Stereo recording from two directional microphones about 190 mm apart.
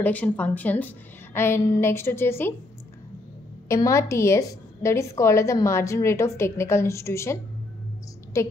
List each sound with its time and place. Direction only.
0.0 s a woman's voice: 10° left (ahead or behind)
3.6 s a woman's voice: 15° left (ahead or behind)
8.3 s a woman's voice: 15° left (ahead or behind)